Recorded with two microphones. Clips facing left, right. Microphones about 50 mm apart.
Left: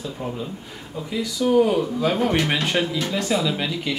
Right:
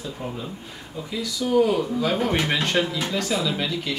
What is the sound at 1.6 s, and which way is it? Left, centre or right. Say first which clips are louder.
Speech: right 1 dB; centre.